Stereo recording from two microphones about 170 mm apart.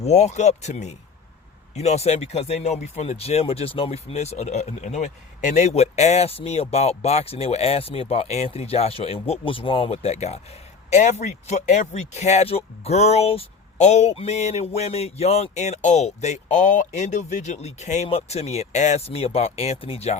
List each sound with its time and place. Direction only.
0.0 s speech: 40° left (ahead or behind)